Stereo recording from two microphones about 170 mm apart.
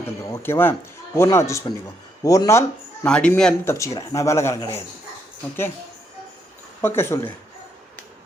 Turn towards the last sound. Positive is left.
turn(degrees=15)  # may be behind; listen again after turning